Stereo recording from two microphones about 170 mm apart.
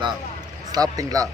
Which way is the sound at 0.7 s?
20° right (ahead or behind).